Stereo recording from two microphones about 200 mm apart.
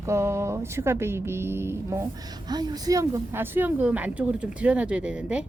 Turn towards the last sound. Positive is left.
turn(degrees=-5)  # may be behind; listen again after turning